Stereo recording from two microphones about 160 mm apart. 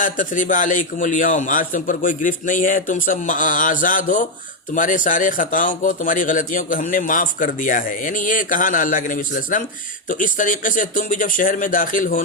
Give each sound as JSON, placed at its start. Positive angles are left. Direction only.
{"t": 0.0, "sound": "speech", "side_deg": 55}